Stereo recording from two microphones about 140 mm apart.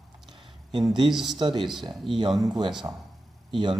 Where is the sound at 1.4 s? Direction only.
35° right (ahead or behind).